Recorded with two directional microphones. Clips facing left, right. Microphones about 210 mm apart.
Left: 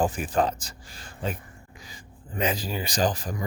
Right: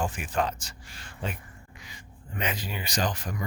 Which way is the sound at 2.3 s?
30° left (ahead or behind).